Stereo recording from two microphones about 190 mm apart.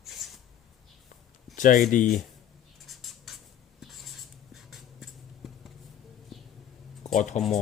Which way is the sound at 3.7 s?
Centre (ahead or behind).